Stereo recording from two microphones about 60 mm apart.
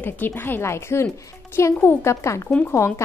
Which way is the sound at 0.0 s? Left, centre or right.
Left.